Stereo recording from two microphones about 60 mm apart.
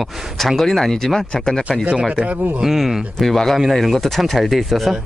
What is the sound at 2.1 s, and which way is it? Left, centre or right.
Speech, centre.